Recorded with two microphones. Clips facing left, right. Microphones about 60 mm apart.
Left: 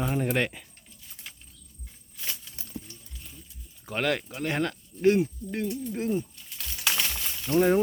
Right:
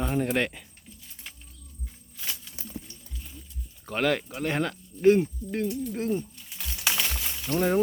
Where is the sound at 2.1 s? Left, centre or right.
Centre.